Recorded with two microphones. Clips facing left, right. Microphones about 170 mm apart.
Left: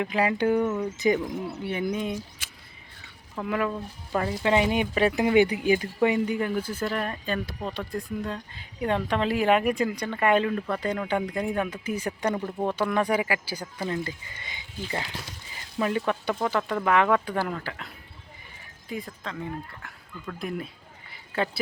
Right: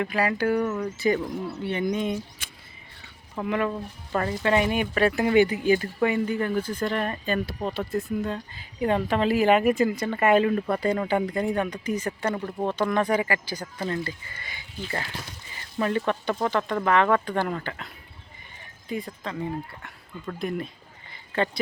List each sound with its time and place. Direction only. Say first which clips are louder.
0.0 s speech: even; 15° left (ahead or behind)
0.6 s speech: even; 10° left (ahead or behind)
3.4 s speech: right 2 dB; 10° right (ahead or behind)
4.1 s speech: even; 5° left (ahead or behind); by 11.0 s 10° right (ahead or behind)
11.1 s speech: right 2 dB; centre (ahead or behind)
18.9 s speech: right 3 dB; centre (ahead or behind)
21.1 s a sound: right 2 dB; 5° left (ahead or behind)